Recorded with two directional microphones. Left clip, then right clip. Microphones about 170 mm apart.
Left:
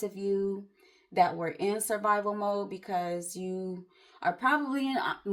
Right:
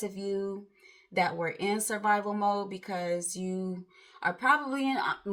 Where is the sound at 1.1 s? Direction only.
30° left (ahead or behind).